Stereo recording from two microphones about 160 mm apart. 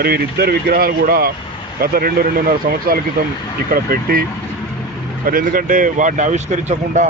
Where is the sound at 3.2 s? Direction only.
65° right (ahead or behind).